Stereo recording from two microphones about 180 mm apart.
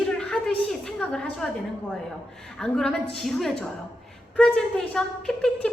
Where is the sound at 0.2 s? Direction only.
5° left (ahead or behind).